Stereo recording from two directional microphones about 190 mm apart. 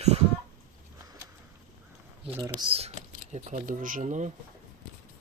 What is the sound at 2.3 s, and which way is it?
Speech, 15° right (ahead or behind).